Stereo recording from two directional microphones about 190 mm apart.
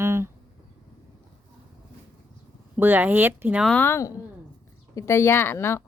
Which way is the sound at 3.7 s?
10° left (ahead or behind).